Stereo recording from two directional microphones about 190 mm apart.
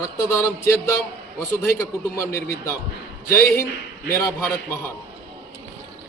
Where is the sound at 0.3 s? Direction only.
15° left (ahead or behind).